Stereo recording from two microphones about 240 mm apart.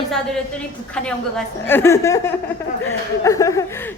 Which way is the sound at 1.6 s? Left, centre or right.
Centre.